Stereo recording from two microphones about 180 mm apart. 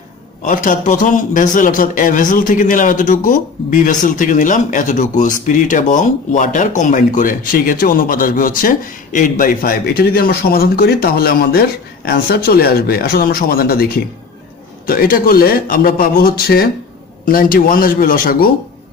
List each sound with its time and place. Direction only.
0.4 s a man's voice: 45° left (ahead or behind)